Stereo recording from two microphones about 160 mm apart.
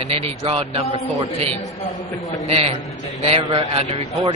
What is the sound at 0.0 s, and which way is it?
Speech, 40° right (ahead or behind).